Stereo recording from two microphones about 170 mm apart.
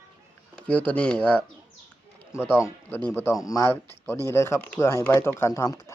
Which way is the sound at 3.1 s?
10° left (ahead or behind).